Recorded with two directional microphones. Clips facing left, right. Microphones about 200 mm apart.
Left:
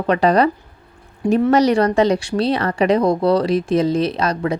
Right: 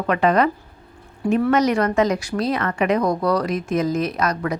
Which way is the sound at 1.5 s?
30° left (ahead or behind).